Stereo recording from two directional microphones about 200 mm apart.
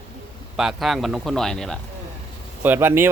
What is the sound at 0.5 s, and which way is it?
Speech, centre (ahead or behind).